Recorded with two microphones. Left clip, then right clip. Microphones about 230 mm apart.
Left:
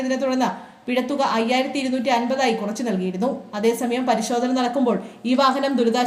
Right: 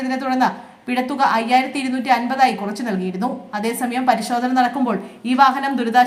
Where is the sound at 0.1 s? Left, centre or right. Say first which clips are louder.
Right 2 dB; right.